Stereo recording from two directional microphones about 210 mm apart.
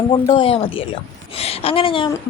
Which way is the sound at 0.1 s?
25° left (ahead or behind).